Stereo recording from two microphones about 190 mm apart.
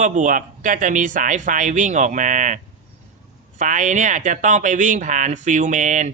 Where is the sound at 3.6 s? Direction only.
40° right (ahead or behind).